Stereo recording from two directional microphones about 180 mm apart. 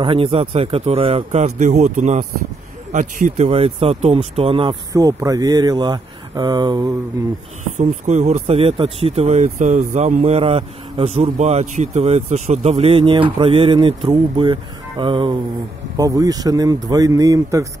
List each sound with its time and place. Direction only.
0.0 s speech: 30° right (ahead or behind)
7.7 s speech: 40° right (ahead or behind); by 17.6 s 20° right (ahead or behind)